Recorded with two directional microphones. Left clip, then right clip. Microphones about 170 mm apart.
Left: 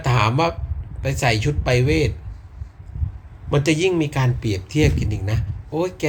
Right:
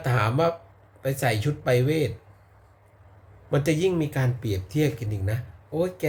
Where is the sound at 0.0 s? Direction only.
15° right (ahead or behind).